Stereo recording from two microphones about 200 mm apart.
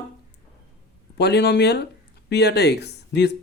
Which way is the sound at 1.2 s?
55° left (ahead or behind).